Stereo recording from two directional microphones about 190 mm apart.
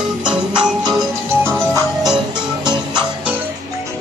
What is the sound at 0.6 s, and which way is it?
Music, 5° right (ahead or behind).